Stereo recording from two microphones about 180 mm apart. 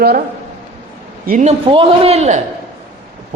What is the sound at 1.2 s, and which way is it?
Speech, 55° right (ahead or behind).